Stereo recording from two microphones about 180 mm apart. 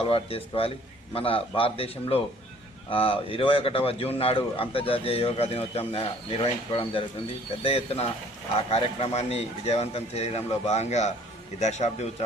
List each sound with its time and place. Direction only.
0.0 s a man's voice: 30° left (ahead or behind)